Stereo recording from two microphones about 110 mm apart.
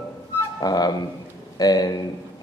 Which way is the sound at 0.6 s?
35° left (ahead or behind).